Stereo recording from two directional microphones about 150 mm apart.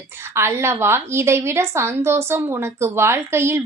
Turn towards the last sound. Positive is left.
turn(degrees=-15)  # may be behind; listen again after turning